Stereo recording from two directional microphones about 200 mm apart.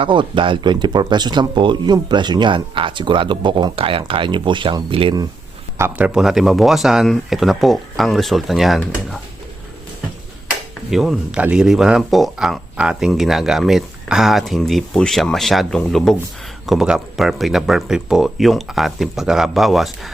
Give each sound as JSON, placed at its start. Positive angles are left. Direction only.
{"t": 0.0, "sound": "speech", "side_deg": -25}
{"t": 5.7, "sound": "speech", "side_deg": -10}
{"t": 10.9, "sound": "speech", "side_deg": 0}